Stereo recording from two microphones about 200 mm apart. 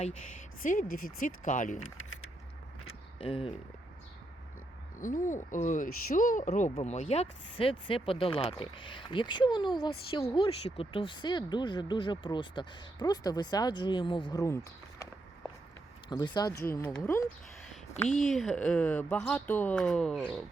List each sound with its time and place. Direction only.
0.0 s speech: 40° left (ahead or behind)
1.8 s typing: 90° left
3.2 s speech: 25° left (ahead or behind)
4.9 s speech: 40° left (ahead or behind); by 15.0 s 15° left (ahead or behind)
16.0 s speech: 20° left (ahead or behind)
16.7 s speech: 5° left (ahead or behind)